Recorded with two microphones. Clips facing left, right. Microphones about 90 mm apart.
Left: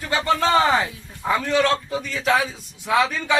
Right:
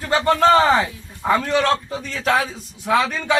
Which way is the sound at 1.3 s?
40° right (ahead or behind).